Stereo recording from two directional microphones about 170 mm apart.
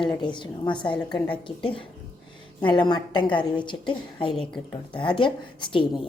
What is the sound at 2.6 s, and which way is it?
A woman's voice, 25° left (ahead or behind).